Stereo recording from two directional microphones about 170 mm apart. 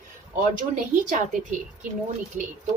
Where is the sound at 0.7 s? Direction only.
50° right (ahead or behind).